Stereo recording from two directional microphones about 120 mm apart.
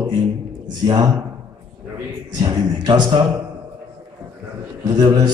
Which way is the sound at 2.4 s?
35° right (ahead or behind).